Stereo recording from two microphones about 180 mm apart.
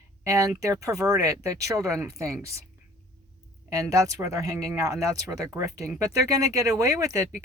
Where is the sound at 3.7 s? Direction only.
20° right (ahead or behind).